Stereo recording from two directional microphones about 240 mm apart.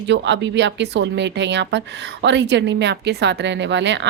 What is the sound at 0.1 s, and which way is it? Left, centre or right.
Speech, right.